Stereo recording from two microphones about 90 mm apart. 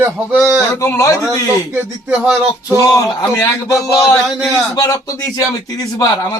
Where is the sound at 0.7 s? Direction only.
30° left (ahead or behind).